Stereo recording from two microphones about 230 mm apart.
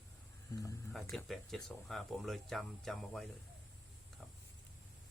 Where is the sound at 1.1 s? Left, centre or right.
Centre.